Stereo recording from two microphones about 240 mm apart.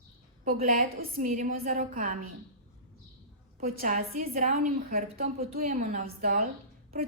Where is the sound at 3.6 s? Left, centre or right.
Right.